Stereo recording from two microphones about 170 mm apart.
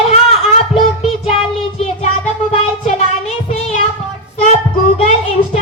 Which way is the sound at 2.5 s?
40° left (ahead or behind).